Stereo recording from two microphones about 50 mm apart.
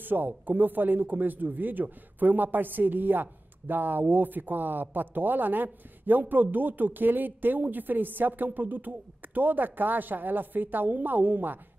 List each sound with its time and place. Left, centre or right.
0.0 s speech: right